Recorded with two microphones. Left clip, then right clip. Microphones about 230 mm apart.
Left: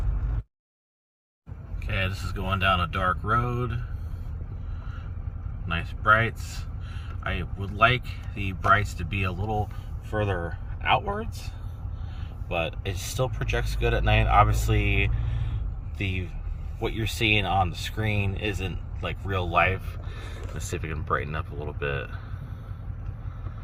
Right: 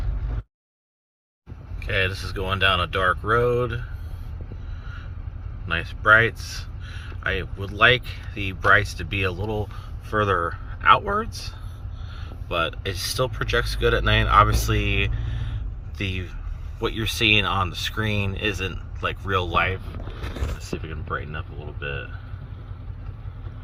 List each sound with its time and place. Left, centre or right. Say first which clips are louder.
1.8 s speech: right 6 dB; centre
5.6 s speech: right 4 dB; centre
20.8 s speech: left 4 dB; centre